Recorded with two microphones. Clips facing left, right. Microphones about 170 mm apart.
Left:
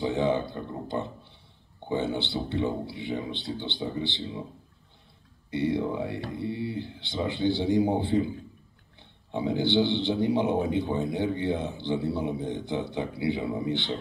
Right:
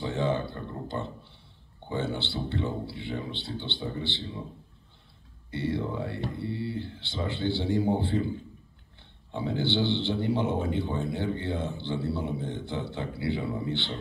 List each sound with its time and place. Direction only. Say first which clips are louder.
0.0 s speech: left 3 dB; 15° left (ahead or behind)
5.5 s speech: left 4 dB; 15° left (ahead or behind)
9.3 s speech: left 3 dB; 15° left (ahead or behind)